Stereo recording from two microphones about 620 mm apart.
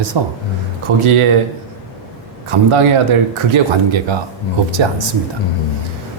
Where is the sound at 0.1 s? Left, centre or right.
Right.